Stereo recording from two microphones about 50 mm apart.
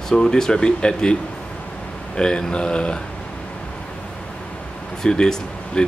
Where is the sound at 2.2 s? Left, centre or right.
Centre.